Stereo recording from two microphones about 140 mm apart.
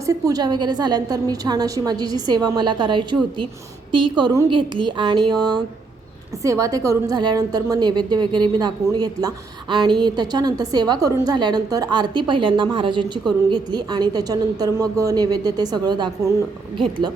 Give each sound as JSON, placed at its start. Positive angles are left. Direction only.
{"t": 0.0, "sound": "a woman's voice", "side_deg": -25}